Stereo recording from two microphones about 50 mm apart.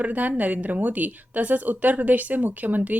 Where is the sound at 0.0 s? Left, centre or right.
Right.